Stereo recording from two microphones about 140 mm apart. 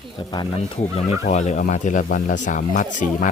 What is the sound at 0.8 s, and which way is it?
Speech, 55° left (ahead or behind).